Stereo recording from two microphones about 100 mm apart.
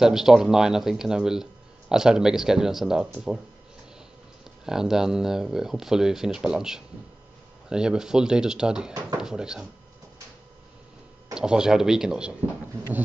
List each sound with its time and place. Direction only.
0.0 s speech: 5° right (ahead or behind)
4.6 s speech: 5° right (ahead or behind)
11.3 s speech: 5° right (ahead or behind)